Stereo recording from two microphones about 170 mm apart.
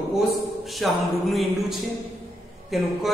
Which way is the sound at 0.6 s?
Centre (ahead or behind).